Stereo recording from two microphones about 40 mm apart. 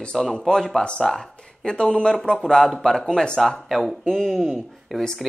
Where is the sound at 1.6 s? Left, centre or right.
Left.